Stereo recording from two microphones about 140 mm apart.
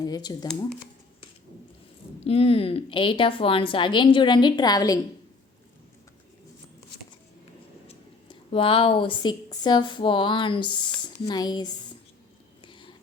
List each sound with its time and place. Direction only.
0.0 s speech: 30° left (ahead or behind)
2.2 s a woman's voice: 45° left (ahead or behind); by 4.9 s 25° left (ahead or behind)
7.9 s speech: 40° left (ahead or behind)
12.6 s whispering: 35° left (ahead or behind)